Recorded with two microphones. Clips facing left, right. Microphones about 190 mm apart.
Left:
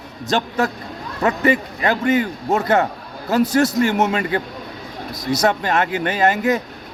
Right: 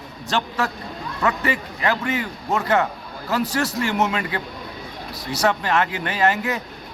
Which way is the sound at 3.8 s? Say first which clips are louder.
Left 5 dB; 20° left (ahead or behind).